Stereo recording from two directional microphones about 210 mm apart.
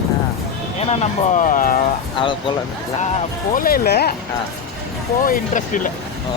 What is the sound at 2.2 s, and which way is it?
Speech, 25° left (ahead or behind).